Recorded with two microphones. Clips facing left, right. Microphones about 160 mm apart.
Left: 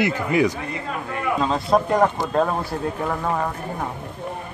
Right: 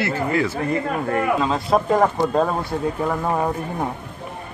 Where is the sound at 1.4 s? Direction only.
Centre (ahead or behind).